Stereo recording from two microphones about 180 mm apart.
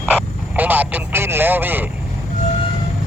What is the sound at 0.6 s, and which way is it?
Speech, 10° right (ahead or behind).